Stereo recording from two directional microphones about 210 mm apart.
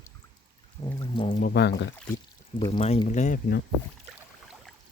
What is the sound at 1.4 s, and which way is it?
Speech, 50° left (ahead or behind).